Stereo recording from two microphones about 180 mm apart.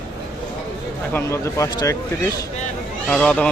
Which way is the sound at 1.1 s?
15° left (ahead or behind).